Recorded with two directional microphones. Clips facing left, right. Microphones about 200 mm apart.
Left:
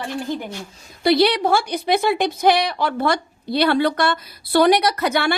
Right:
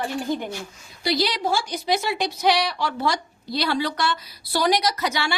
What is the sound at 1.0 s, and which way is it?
A woman's voice, 60° left (ahead or behind).